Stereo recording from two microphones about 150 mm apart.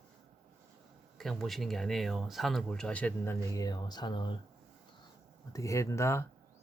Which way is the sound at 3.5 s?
25° left (ahead or behind).